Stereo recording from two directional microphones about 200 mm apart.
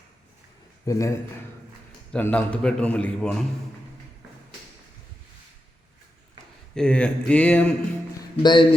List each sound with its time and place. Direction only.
0.9 s a man's voice: 15° left (ahead or behind)
6.7 s a man's voice: 5° left (ahead or behind)
8.4 s speech: 20° left (ahead or behind)